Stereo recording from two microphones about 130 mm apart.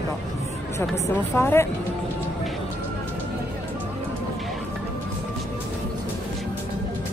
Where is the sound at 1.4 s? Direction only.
20° left (ahead or behind).